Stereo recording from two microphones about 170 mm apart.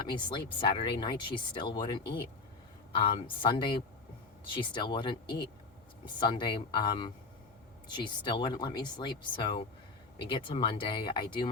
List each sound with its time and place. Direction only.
0.0 s speech: 30° left (ahead or behind)
3.0 s speech: 30° left (ahead or behind)